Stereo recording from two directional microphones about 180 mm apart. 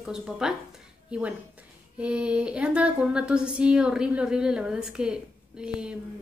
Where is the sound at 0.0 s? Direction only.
5° right (ahead or behind).